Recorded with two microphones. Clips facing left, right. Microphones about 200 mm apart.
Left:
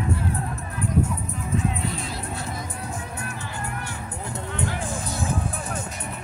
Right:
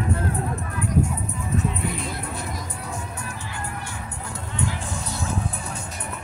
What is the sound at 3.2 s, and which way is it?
Music, 65° left (ahead or behind).